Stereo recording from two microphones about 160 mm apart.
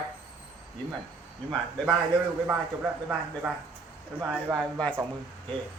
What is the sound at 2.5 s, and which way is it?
Speech, 10° right (ahead or behind).